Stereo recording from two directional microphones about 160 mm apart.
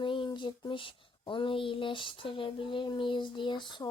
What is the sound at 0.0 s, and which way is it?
Speech, 30° left (ahead or behind).